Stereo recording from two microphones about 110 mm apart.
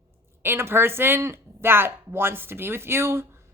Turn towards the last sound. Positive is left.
turn(degrees=-20)  # may be behind; listen again after turning